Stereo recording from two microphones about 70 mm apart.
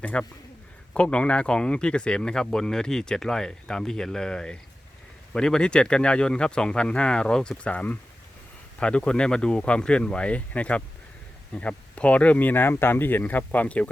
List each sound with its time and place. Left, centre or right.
0.0 s speech: centre